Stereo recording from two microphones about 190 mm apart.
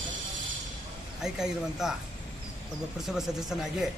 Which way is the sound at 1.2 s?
5° right (ahead or behind).